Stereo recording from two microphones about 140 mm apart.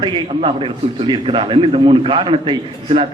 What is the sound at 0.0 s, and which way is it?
A man's voice, 35° right (ahead or behind).